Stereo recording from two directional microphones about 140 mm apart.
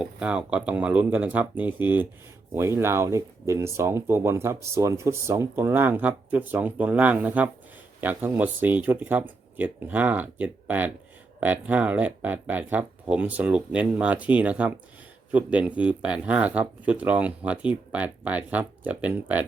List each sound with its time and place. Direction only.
0.0 s speech: 5° right (ahead or behind)